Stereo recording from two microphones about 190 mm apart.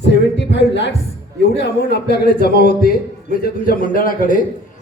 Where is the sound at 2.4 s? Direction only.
55° left (ahead or behind).